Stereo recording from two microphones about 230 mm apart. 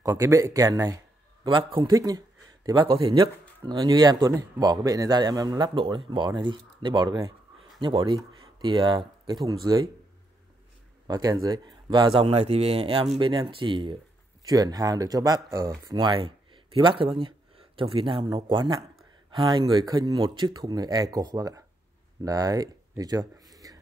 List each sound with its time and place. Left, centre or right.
0.0 s speech: centre
11.1 s speech: centre
22.2 s a sound: centre